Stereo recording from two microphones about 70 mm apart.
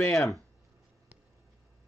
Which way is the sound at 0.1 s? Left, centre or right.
Centre.